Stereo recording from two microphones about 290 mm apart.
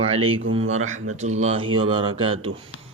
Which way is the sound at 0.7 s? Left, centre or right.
Right.